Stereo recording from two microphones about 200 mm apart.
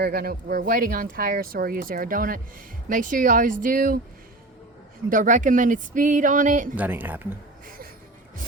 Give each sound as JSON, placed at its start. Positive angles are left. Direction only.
{"t": 0.0, "sound": "speech", "side_deg": -50}
{"t": 5.0, "sound": "speech", "side_deg": -40}
{"t": 6.7, "sound": "a woman's voice", "side_deg": -10}